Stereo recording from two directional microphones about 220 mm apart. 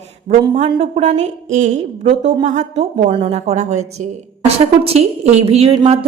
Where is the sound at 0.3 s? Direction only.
30° right (ahead or behind).